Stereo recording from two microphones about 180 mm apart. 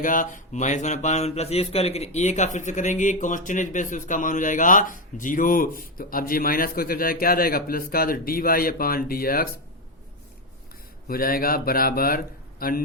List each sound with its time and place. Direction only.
0.0 s speech: 45° left (ahead or behind)
11.1 s speech: 55° left (ahead or behind)